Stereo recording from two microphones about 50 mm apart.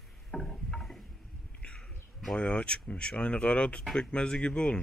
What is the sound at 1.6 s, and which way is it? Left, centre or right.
Bird, left.